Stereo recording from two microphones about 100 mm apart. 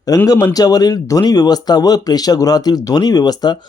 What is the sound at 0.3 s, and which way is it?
Speech, 35° left (ahead or behind).